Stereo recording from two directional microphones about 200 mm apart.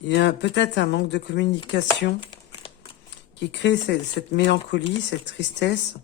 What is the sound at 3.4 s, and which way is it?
Speech, 60° left (ahead or behind).